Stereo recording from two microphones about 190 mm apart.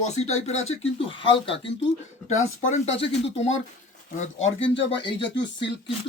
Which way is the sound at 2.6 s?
40° left (ahead or behind).